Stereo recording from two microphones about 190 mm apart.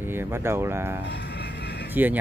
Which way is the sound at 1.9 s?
10° right (ahead or behind).